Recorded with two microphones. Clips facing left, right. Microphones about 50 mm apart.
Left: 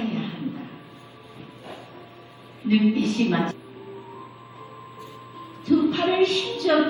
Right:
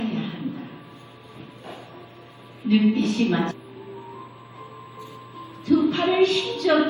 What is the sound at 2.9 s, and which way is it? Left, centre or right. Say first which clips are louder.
Speech: right 1 dB; right.